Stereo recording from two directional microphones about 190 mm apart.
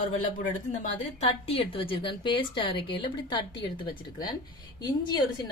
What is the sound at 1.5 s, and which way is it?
A woman's voice, 30° left (ahead or behind).